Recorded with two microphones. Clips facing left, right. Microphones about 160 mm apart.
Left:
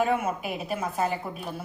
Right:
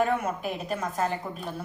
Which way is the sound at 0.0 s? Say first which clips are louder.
Even; 5° left (ahead or behind).